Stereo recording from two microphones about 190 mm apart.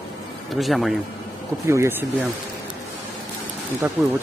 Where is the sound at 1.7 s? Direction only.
10° right (ahead or behind).